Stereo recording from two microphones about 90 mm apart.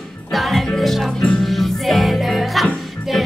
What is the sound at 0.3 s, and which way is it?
Music, centre (ahead or behind).